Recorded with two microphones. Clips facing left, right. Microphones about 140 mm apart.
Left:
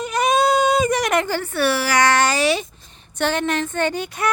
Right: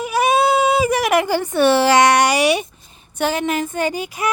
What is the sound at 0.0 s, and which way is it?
Baby cry, 5° right (ahead or behind).